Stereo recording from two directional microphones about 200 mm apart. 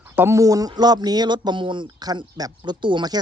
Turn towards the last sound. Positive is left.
turn(degrees=-25)  # may be behind; listen again after turning